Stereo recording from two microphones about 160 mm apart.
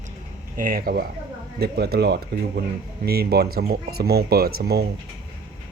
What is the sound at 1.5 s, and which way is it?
Speech, 80° right.